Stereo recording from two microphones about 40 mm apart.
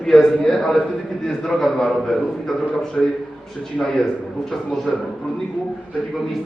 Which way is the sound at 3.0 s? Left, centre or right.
Centre.